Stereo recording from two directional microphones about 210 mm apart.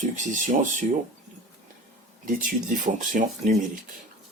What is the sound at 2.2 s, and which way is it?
Speech, 40° right (ahead or behind).